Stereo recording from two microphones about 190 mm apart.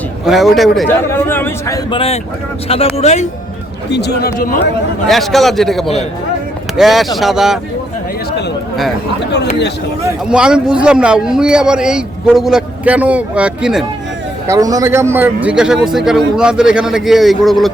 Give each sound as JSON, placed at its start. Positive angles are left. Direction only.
{"t": 0.3, "sound": "a man's voice", "side_deg": 0}
{"t": 0.9, "sound": "a man's voice", "side_deg": 10}
{"t": 2.6, "sound": "speech", "side_deg": 30}
{"t": 3.9, "sound": "speech", "side_deg": 60}
{"t": 5.0, "sound": "a man's voice", "side_deg": 0}
{"t": 10.2, "sound": "a man's voice", "side_deg": -5}
{"t": 14.4, "sound": "a man's voice", "side_deg": -20}